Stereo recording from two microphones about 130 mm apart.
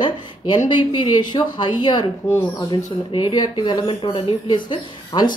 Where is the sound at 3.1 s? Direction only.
35° left (ahead or behind).